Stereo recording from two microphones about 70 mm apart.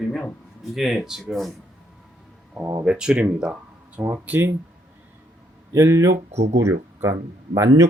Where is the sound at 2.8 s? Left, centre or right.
Centre.